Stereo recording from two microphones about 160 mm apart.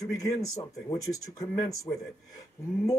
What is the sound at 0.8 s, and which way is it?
A man's voice, 20° left (ahead or behind).